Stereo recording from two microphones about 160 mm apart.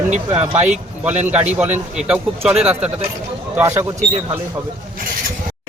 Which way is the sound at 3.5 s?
20° right (ahead or behind).